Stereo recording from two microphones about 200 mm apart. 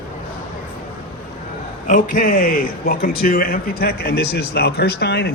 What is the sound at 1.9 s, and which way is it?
Speech, 45° left (ahead or behind).